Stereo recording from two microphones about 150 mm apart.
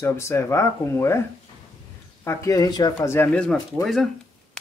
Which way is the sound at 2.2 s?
20° left (ahead or behind).